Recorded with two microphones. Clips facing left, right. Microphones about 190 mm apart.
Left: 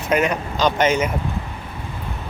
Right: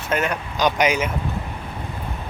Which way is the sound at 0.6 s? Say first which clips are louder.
Left 1 dB; 10° right (ahead or behind).